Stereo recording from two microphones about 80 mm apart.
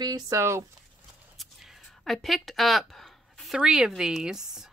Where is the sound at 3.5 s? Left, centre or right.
Centre.